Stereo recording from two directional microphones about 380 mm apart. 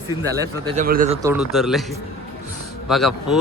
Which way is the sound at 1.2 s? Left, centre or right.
Centre.